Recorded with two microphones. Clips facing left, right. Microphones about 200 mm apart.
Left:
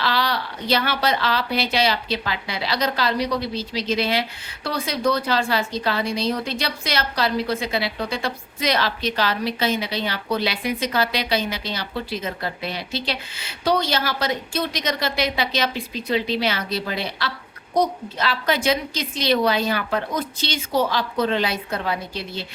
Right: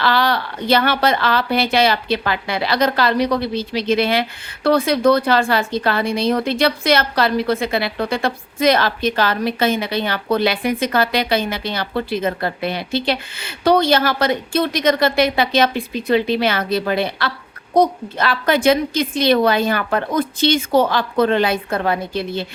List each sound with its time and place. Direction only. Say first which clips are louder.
0.0 s a woman's voice: right 5 dB; 55° right (ahead or behind)